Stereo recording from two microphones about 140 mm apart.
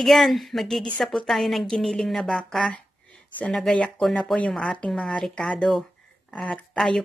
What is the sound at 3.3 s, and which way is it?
Speech, 5° left (ahead or behind).